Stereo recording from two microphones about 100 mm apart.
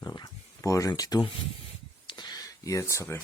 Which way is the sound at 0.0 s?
40° left (ahead or behind).